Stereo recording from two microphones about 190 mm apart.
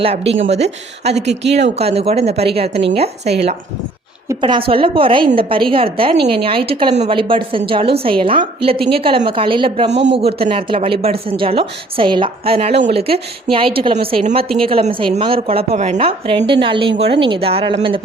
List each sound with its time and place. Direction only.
0.0 s a woman's voice: 30° right (ahead or behind)